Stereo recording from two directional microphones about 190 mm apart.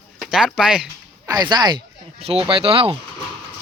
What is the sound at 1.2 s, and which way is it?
Speech, 20° right (ahead or behind).